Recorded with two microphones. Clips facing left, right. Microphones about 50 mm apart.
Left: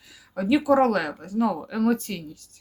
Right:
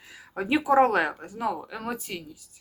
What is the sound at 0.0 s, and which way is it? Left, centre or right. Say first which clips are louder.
Speech: left 3 dB; right.